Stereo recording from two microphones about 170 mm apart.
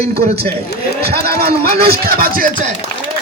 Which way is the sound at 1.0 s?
65° right (ahead or behind).